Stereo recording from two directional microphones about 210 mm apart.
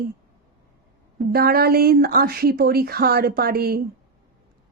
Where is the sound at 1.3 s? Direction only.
45° right (ahead or behind).